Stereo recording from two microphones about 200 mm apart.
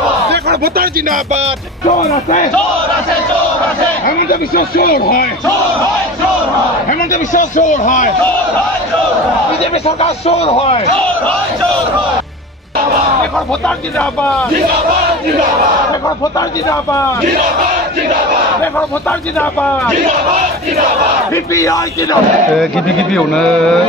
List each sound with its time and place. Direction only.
0.3 s speech: 50° right (ahead or behind)
1.9 s a man's voice: 30° left (ahead or behind)
4.0 s speech: 50° left (ahead or behind)
6.9 s a man's voice: 40° left (ahead or behind)
9.8 s a man's voice: 30° left (ahead or behind)
21.5 s speech: 15° left (ahead or behind)
23.1 s a sound: 5° left (ahead or behind)